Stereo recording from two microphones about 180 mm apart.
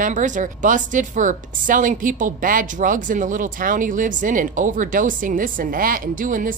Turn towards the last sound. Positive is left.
turn(degrees=-50)  # may be behind; listen again after turning